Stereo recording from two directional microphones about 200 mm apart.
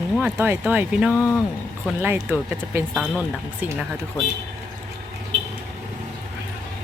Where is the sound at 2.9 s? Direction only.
Centre (ahead or behind).